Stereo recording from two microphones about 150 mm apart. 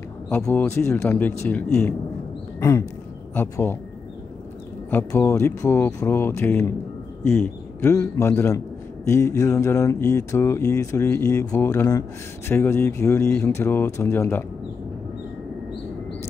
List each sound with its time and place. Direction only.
0.4 s speech: 15° left (ahead or behind)
3.3 s speech: 15° left (ahead or behind)
4.9 s speech: 20° left (ahead or behind)